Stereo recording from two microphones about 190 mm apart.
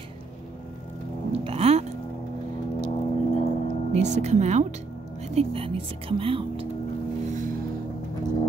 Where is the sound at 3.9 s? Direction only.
35° right (ahead or behind).